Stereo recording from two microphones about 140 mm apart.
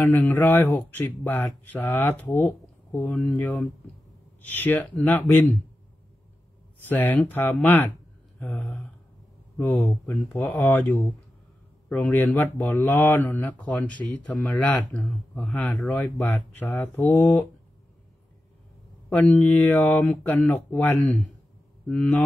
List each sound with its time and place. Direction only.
0.0 s speech: 15° left (ahead or behind)
6.9 s speech: 10° left (ahead or behind)
19.0 s speech: 10° left (ahead or behind)